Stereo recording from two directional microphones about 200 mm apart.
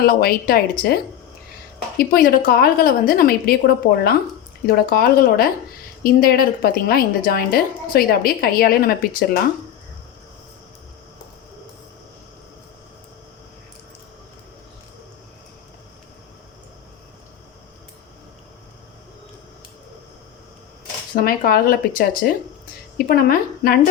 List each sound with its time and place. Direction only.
0.0 s a woman's voice: 50° left (ahead or behind)
2.0 s a woman's voice: 50° left (ahead or behind)
4.6 s a woman's voice: 50° left (ahead or behind)
21.2 s a woman's voice: 50° left (ahead or behind)